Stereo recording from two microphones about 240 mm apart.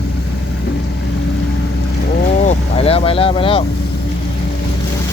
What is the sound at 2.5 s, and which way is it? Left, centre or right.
Vehicle, left.